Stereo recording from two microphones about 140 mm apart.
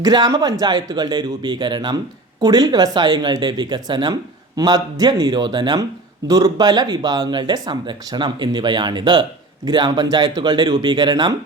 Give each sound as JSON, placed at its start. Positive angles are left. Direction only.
{"t": 0.0, "sound": "speech", "side_deg": -30}